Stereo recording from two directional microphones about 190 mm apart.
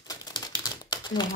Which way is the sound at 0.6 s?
20° left (ahead or behind).